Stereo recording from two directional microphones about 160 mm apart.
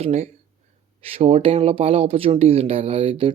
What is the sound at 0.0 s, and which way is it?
Speech, 50° right (ahead or behind).